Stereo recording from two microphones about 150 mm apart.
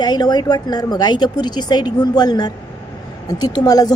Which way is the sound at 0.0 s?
30° left (ahead or behind).